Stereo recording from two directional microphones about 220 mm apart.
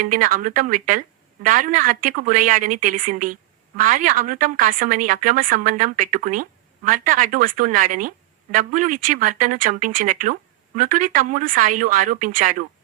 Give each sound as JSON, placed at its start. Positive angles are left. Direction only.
{"t": 0.0, "sound": "a woman's voice", "side_deg": -35}